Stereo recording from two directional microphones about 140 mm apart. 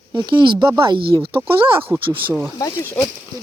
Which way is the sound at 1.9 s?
25° right (ahead or behind).